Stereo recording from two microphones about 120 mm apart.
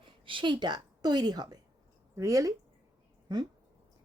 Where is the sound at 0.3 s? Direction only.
45° right (ahead or behind).